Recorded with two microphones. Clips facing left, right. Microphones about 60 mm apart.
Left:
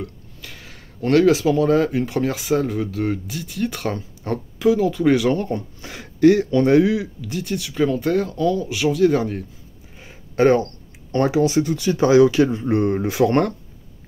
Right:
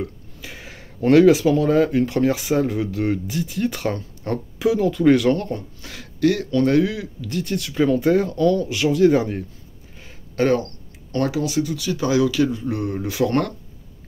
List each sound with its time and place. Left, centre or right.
0.0 s speech: centre
5.5 s speech: left; by 8.3 s centre
8.3 s speech: centre
9.9 s speech: centre